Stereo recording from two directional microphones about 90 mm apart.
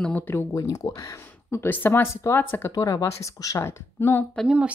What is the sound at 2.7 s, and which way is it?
A woman's voice, 40° left (ahead or behind).